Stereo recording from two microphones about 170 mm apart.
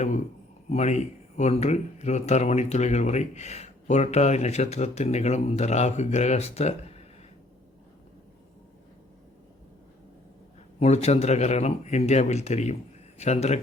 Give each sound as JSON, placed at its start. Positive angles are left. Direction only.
{"t": 0.7, "sound": "speech", "side_deg": 40}
{"t": 10.8, "sound": "a man's voice", "side_deg": 40}